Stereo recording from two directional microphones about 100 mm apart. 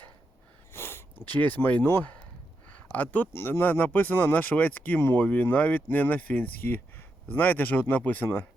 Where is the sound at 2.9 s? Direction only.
15° left (ahead or behind).